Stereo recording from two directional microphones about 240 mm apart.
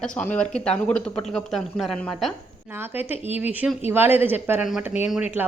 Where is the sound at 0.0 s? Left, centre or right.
Centre.